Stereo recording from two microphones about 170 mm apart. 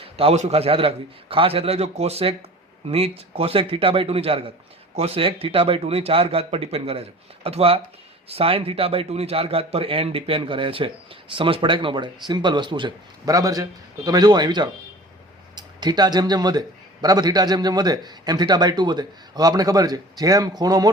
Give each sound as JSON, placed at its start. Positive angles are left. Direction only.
{"t": 0.0, "sound": "a man's voice", "side_deg": -35}